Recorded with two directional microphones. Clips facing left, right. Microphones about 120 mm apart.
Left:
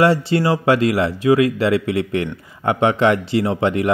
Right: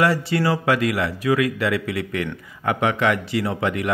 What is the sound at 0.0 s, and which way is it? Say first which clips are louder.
Speech: left 4 dB; 25° left (ahead or behind).